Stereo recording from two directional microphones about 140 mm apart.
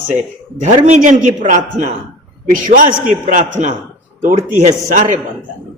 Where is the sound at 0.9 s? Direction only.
65° right (ahead or behind).